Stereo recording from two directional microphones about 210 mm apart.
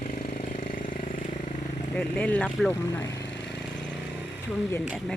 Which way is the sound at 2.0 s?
5° left (ahead or behind).